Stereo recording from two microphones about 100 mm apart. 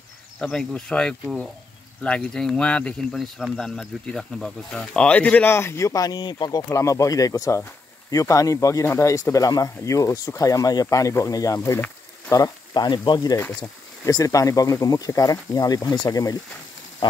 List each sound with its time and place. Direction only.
0.4 s speech: 5° left (ahead or behind); by 6.6 s 45° left (ahead or behind)
6.7 s speech: 30° left (ahead or behind)
12.7 s frying: 50° left (ahead or behind)
14.0 s speech: 35° left (ahead or behind)
17.0 s speech: 50° left (ahead or behind)